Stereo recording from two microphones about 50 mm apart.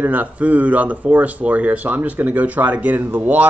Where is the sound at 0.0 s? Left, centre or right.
Right.